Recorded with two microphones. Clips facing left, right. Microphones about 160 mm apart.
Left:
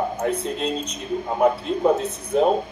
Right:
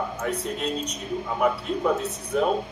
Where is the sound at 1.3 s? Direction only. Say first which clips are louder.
Left 5 dB; 40° left (ahead or behind).